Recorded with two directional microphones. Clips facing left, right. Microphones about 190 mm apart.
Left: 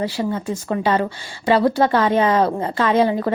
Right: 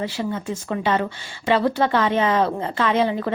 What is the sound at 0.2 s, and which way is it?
A woman's voice, 35° left (ahead or behind).